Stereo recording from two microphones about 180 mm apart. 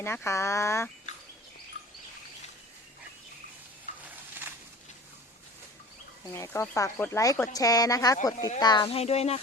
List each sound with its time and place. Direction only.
0.0 s speech: 15° left (ahead or behind)
6.3 s speech: 15° left (ahead or behind); by 9.4 s 35° left (ahead or behind)